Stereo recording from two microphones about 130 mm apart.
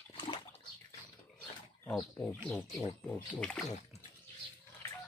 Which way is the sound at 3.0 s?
10° left (ahead or behind).